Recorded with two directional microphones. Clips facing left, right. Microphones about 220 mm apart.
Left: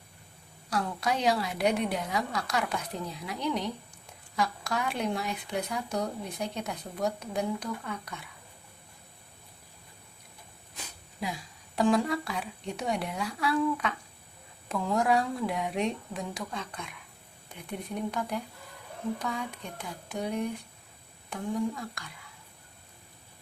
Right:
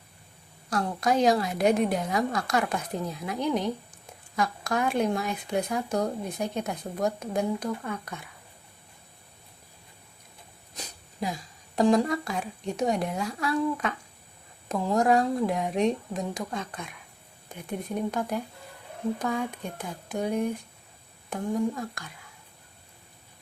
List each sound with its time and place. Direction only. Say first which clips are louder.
0.7 s speech: right 4 dB; 45° right (ahead or behind)
10.8 s a sound: right 4 dB; 40° right (ahead or behind)
11.8 s speech: right 3 dB; 40° right (ahead or behind)
18.1 s speech: right 3 dB; 45° right (ahead or behind)
21.2 s speech: right 3 dB; 45° right (ahead or behind)